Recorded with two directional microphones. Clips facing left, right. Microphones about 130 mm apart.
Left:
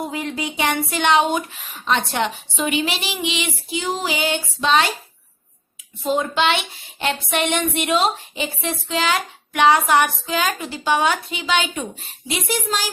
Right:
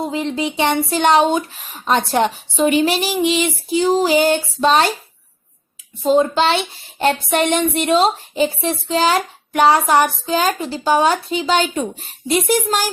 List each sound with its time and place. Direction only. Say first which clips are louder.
0.0 s speech: right 5 dB; 25° right (ahead or behind)
1.8 s speech: right 5 dB; 40° right (ahead or behind)
6.0 s speech: right 6 dB; 35° right (ahead or behind)
12.3 s a child's voice: right 7 dB; 45° right (ahead or behind)